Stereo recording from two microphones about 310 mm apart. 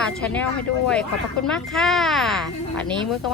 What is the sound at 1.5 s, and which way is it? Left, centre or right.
Speech, centre.